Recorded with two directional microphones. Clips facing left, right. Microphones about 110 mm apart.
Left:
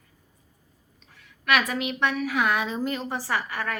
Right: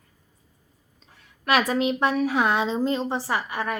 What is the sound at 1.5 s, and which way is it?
A woman's voice, 30° right (ahead or behind).